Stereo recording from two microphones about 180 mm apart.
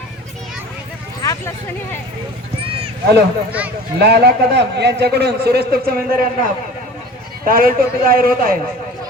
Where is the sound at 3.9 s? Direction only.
65° right (ahead or behind).